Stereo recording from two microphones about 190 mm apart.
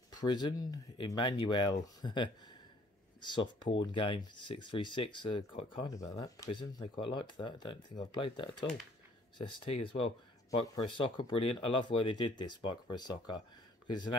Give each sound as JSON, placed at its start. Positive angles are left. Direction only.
{"t": 0.2, "sound": "speech", "side_deg": 25}
{"t": 3.3, "sound": "speech", "side_deg": 25}
{"t": 5.9, "sound": "speech", "side_deg": 20}